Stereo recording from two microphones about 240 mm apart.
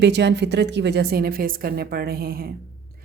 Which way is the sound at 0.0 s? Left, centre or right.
Right.